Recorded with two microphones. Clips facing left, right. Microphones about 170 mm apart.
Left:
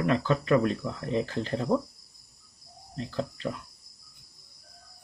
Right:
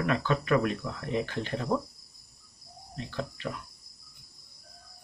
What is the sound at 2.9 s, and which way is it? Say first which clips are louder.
Cricket: left 3 dB; 35° left (ahead or behind).